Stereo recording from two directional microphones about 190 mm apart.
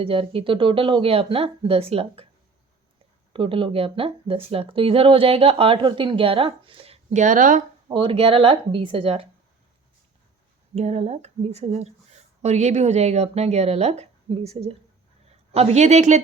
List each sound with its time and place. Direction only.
0.0 s speech: 30° right (ahead or behind)
3.3 s speech: 25° right (ahead or behind); by 7.6 s 45° right (ahead or behind)
7.9 s speech: 25° right (ahead or behind)
10.8 s speech: 35° right (ahead or behind)